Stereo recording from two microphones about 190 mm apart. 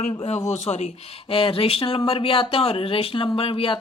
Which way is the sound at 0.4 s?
35° left (ahead or behind).